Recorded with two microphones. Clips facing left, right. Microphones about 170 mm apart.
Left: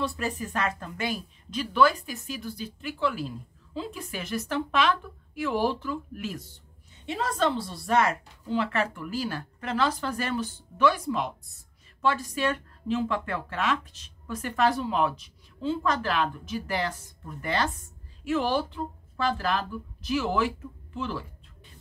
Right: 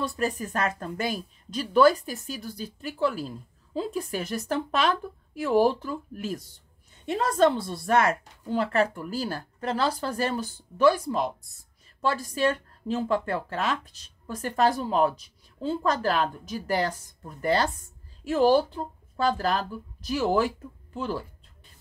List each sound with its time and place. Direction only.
0.0 s speech: 40° right (ahead or behind)